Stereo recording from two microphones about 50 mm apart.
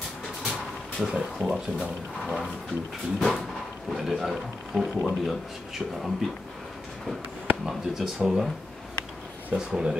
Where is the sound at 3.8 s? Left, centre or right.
Centre.